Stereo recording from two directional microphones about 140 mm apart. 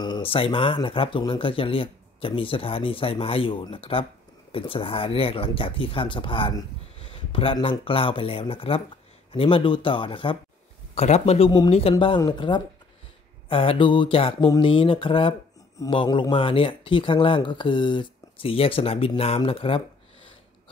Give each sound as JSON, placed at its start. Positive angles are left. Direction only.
{"t": 0.0, "sound": "speech", "side_deg": 35}
{"t": 11.0, "sound": "speech", "side_deg": 50}
{"t": 12.2, "sound": "speech", "side_deg": 35}